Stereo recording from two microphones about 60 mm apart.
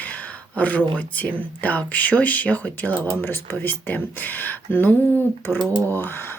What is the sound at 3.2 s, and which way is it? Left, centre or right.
Speech, left.